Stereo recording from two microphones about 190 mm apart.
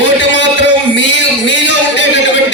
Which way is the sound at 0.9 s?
75° left (ahead or behind).